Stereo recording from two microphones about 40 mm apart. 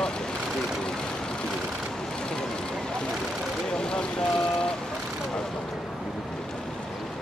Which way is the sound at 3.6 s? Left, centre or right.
Left.